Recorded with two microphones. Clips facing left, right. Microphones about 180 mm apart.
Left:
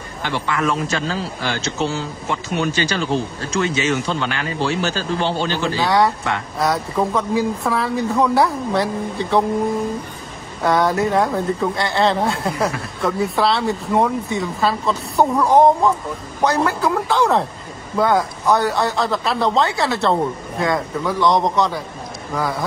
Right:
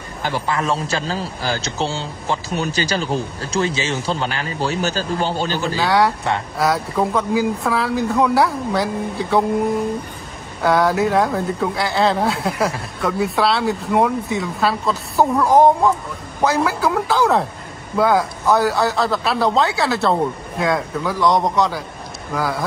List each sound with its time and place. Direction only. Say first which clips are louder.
0.2 s a man's voice: even; 35° right (ahead or behind)
5.8 s speech: even; centre (ahead or behind)
10.6 s speech: right 1 dB; centre (ahead or behind)